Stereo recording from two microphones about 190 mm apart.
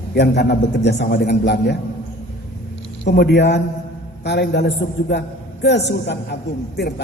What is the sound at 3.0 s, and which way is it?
A man's voice, 65° left (ahead or behind).